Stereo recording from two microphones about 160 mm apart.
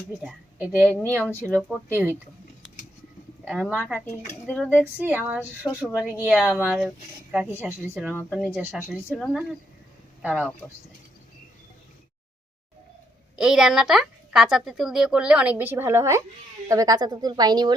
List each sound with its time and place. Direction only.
0.2 s speech: 10° right (ahead or behind)
0.9 s speech: 10° left (ahead or behind)
1.9 s a woman's voice: 10° right (ahead or behind)
3.4 s a woman's voice: 5° right (ahead or behind)
4.4 s speech: 5° left (ahead or behind)
4.7 s a woman's voice: 10° right (ahead or behind)
8.1 s speech: 15° left (ahead or behind)
8.5 s a woman's voice: 5° right (ahead or behind)
13.3 s a woman's voice: 5° right (ahead or behind); by 17.7 s 25° right (ahead or behind)